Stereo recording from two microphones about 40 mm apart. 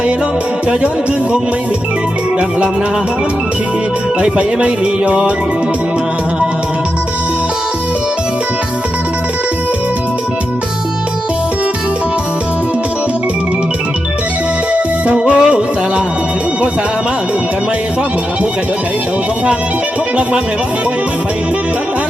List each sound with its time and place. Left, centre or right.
4.2 s music: right
14.7 s music: right